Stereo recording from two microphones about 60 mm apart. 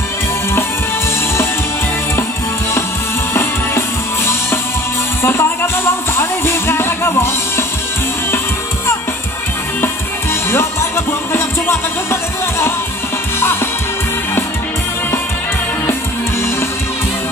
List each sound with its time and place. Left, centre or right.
5.2 s music: left
10.5 s music: left